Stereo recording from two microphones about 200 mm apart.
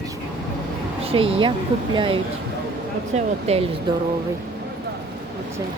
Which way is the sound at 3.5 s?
30° right (ahead or behind).